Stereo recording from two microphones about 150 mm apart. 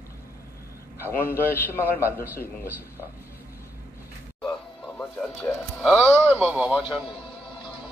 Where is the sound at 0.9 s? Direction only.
15° left (ahead or behind).